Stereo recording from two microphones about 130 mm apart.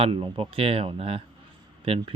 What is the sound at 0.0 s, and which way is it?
Speech, 40° right (ahead or behind).